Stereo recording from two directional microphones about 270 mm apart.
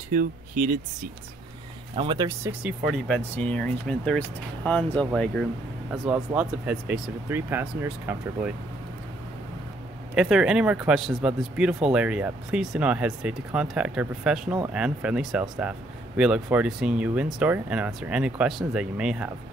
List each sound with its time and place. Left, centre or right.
0.1 s speech: right
2.0 s speech: centre
2.9 s speech: centre
10.1 s speech: centre